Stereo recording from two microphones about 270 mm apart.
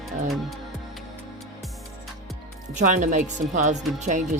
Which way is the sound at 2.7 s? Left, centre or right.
Right.